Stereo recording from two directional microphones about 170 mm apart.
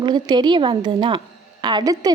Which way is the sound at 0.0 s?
25° right (ahead or behind).